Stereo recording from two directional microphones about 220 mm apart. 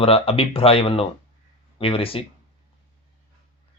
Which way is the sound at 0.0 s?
25° left (ahead or behind).